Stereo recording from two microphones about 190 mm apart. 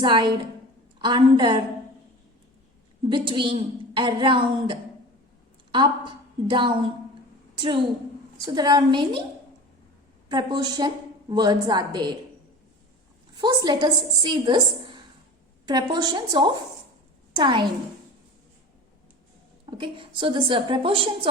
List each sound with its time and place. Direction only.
0.0 s a woman's voice: 25° right (ahead or behind)
3.1 s a woman's voice: 25° right (ahead or behind)
10.2 s a woman's voice: 25° right (ahead or behind)
13.4 s a woman's voice: 20° right (ahead or behind)
19.7 s a woman's voice: 25° right (ahead or behind)